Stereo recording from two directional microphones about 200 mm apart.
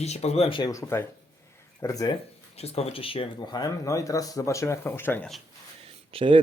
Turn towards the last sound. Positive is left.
turn(degrees=-25)  # may be behind; listen again after turning